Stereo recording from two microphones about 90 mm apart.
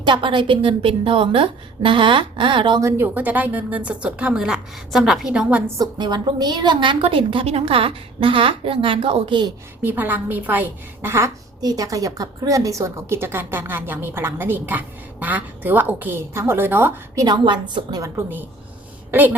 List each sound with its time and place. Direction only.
0.0 s a woman's voice: 65° right (ahead or behind)
3.0 s a woman's voice: 20° right (ahead or behind)
6.0 s a woman's voice: 55° right (ahead or behind); by 9.5 s 70° right (ahead or behind)
9.8 s a woman's voice: 20° right (ahead or behind)
11.6 s a woman's voice: 45° right (ahead or behind); by 16.9 s 25° right (ahead or behind)
17.2 s a woman's voice: 55° right (ahead or behind)